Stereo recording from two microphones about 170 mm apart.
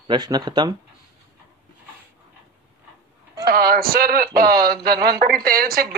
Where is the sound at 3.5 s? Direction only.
60° right (ahead or behind).